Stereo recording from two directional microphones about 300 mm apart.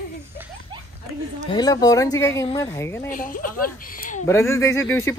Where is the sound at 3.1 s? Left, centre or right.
Left.